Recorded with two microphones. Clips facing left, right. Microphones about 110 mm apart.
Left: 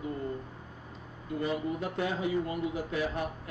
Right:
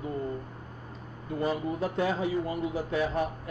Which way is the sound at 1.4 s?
35° right (ahead or behind).